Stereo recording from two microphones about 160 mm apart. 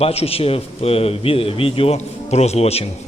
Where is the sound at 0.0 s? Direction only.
40° left (ahead or behind).